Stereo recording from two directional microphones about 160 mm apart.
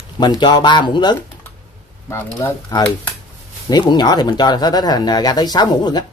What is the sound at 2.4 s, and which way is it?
Speech, 20° left (ahead or behind).